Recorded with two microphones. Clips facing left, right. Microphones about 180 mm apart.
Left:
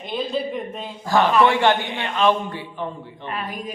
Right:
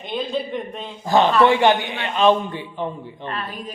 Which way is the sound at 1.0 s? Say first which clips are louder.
Right 2 dB; 20° right (ahead or behind).